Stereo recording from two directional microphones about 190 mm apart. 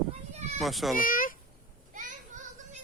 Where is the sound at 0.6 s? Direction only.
Centre (ahead or behind).